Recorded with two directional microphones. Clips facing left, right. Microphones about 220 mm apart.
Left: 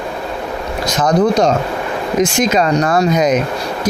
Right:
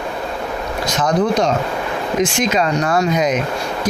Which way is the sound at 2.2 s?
40° left (ahead or behind).